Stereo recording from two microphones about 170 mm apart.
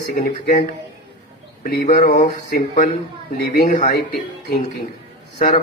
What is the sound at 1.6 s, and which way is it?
Speech, 55° left (ahead or behind).